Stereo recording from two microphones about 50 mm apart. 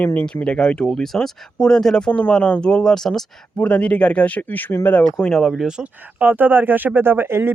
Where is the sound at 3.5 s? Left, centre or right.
Left.